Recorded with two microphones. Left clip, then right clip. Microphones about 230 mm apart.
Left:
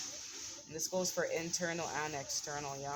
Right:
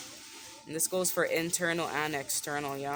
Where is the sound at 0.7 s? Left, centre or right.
Right.